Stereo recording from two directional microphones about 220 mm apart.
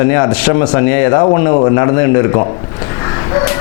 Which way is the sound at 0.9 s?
25° left (ahead or behind).